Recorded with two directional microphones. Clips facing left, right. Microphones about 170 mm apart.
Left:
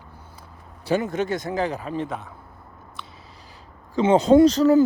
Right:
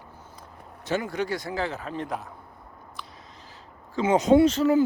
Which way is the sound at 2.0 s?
Centre (ahead or behind).